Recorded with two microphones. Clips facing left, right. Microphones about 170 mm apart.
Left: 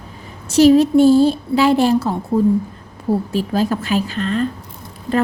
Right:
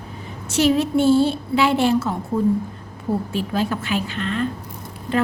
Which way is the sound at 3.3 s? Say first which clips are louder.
Left 4 dB; 40° left (ahead or behind).